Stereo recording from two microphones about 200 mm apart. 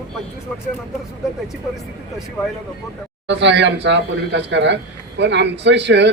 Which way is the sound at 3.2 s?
60° right (ahead or behind).